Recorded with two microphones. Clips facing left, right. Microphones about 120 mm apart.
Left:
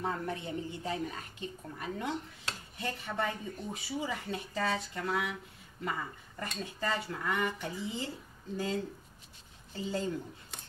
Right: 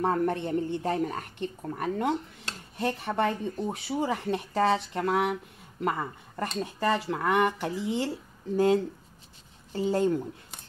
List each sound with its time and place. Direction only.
0.0 s a woman's voice: 55° right (ahead or behind)
2.8 s speech: 65° right (ahead or behind)
9.8 s speech: 60° right (ahead or behind)